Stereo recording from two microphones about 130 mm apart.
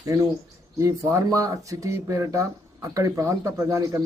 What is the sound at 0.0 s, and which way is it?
Speech, 25° right (ahead or behind).